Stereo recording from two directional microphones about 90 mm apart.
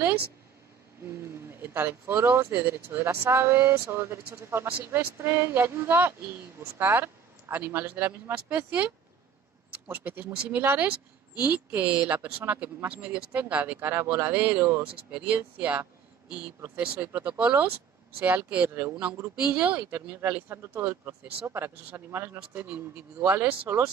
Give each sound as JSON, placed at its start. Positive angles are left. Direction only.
{"t": 1.5, "sound": "speech", "side_deg": -25}
{"t": 19.3, "sound": "speech", "side_deg": -10}